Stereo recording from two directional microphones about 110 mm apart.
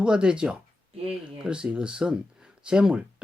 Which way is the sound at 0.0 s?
10° right (ahead or behind).